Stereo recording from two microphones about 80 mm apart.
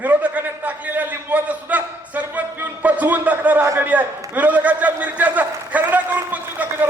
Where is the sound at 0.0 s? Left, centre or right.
Centre.